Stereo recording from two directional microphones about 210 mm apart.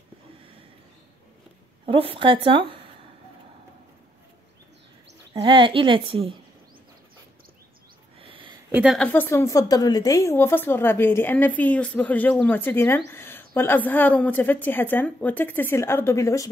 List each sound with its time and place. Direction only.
1.9 s a woman's voice: 25° right (ahead or behind)
5.3 s a woman's voice: 25° right (ahead or behind)
8.2 s a sound: 25° right (ahead or behind)
8.7 s a woman's voice: centre (ahead or behind)